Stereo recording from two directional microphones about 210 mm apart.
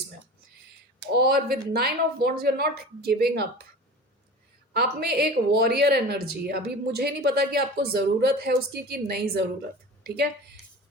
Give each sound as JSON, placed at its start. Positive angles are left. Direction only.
{"t": 1.2, "sound": "speech", "side_deg": -50}
{"t": 4.7, "sound": "speech", "side_deg": -50}